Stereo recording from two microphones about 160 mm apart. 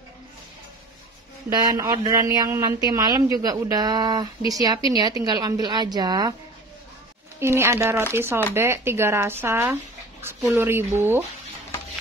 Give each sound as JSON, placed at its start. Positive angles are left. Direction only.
{"t": 1.5, "sound": "speech", "side_deg": -25}
{"t": 7.3, "sound": "speech", "side_deg": -15}